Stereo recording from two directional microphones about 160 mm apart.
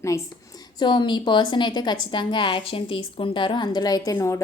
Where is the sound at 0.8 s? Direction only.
30° left (ahead or behind).